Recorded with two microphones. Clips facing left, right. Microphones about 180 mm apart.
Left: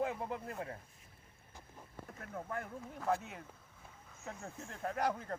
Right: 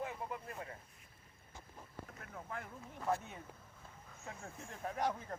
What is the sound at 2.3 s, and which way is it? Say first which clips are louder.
Speech: left 5 dB; 50° left (ahead or behind).